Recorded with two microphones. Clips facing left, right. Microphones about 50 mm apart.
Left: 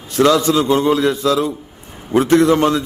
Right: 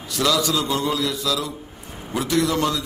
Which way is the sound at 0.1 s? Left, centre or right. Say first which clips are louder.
Left 8 dB; left.